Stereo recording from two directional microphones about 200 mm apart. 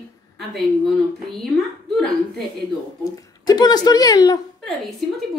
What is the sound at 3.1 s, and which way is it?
Speech, 20° left (ahead or behind).